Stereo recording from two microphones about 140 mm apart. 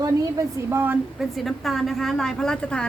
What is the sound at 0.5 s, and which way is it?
Speech, 15° right (ahead or behind).